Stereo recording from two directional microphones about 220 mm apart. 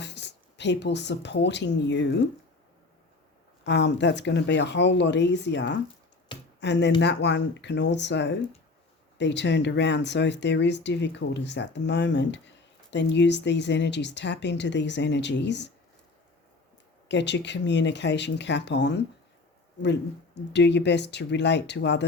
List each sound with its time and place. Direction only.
0.0 s speech: 50° left (ahead or behind)
3.6 s speech: 50° left (ahead or behind)
17.1 s speech: 55° left (ahead or behind)